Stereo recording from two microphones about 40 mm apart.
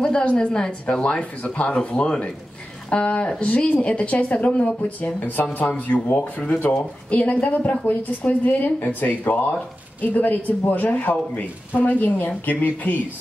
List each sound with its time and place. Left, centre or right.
0.0 s a woman's voice: left
1.8 s a woman's voice: left
5.2 s a woman's voice: left
6.4 s a woman's voice: left